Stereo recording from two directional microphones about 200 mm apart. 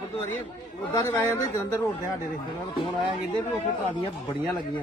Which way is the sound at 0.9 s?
15° left (ahead or behind).